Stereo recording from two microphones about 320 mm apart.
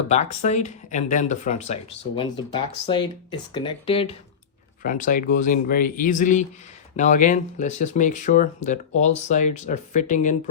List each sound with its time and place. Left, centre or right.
0.1 s speech: left